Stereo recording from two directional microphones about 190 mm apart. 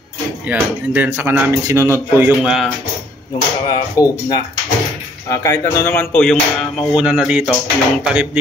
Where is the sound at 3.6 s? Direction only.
20° left (ahead or behind).